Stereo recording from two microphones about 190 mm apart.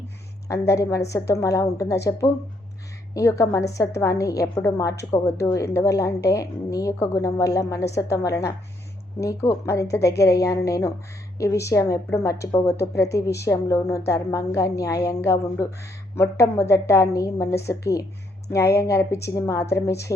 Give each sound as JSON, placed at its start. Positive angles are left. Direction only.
{"t": 0.4, "sound": "a woman's voice", "side_deg": 15}
{"t": 18.5, "sound": "a woman's voice", "side_deg": 15}